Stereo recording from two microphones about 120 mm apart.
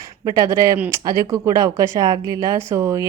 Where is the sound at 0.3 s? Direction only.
25° right (ahead or behind).